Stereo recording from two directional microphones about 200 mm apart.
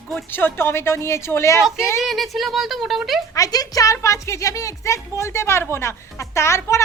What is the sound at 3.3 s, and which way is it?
A woman's voice, 15° left (ahead or behind).